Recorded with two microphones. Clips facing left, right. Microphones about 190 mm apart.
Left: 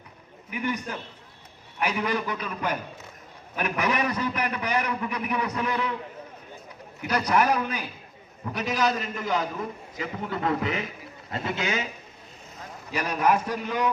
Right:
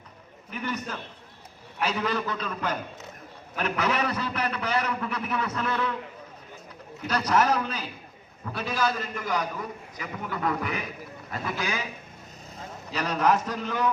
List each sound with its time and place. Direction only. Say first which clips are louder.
0.5 s a man's voice: left 3 dB; 15° left (ahead or behind)
7.0 s a man's voice: left 1 dB; 15° left (ahead or behind)
12.9 s a man's voice: even; 10° left (ahead or behind)